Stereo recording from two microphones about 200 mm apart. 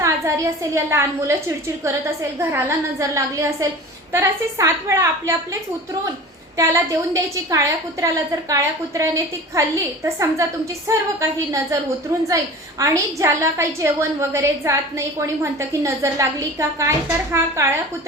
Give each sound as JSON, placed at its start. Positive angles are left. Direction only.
{"t": 0.0, "sound": "a woman's voice", "side_deg": -15}
{"t": 6.6, "sound": "a woman's voice", "side_deg": -15}
{"t": 12.8, "sound": "a woman's voice", "side_deg": -15}